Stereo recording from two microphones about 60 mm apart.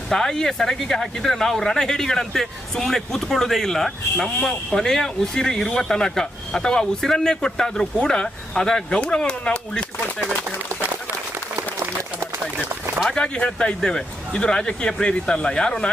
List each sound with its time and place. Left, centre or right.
0.1 s speech: centre
11.5 s applause: right
13.1 s speech: centre